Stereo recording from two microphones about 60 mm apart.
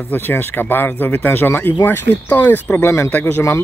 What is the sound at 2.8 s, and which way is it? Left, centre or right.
Speech, left.